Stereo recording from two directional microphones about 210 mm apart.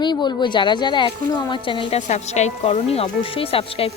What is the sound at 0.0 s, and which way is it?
Speech, 20° left (ahead or behind).